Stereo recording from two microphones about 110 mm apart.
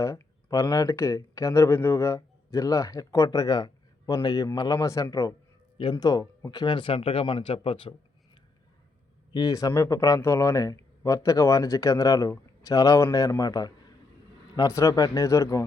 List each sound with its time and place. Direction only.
0.0 s speech: 30° left (ahead or behind)
5.7 s speech: 45° left (ahead or behind)
9.3 s a man's voice: 35° left (ahead or behind)